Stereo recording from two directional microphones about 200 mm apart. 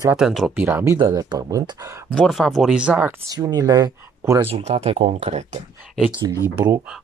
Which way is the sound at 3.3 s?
20° right (ahead or behind).